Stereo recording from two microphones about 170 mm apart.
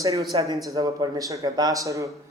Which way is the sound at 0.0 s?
20° right (ahead or behind).